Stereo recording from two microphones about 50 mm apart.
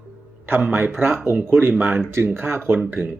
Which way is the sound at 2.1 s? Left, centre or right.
Right.